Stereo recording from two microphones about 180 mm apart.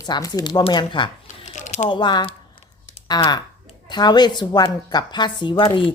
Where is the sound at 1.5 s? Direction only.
40° left (ahead or behind).